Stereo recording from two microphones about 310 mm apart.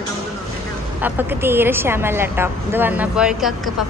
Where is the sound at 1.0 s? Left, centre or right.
Centre.